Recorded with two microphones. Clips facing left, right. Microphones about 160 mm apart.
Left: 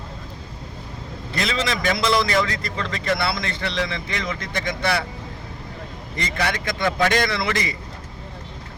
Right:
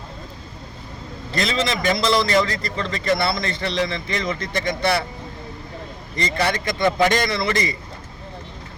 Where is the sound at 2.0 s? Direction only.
20° right (ahead or behind).